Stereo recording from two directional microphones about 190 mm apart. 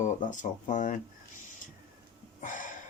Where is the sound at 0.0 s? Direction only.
40° left (ahead or behind).